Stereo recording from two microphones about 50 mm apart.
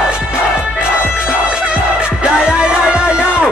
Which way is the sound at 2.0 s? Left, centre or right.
Centre.